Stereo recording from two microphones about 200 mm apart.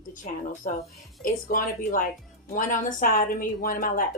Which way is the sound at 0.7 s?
45° left (ahead or behind).